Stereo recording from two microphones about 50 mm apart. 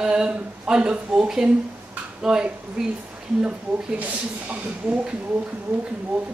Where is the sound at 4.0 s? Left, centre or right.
Right.